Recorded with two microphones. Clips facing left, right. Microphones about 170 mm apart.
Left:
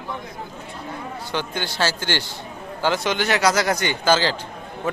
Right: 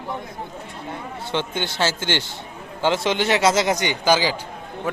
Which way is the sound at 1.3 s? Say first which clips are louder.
Right 2 dB; 20° right (ahead or behind).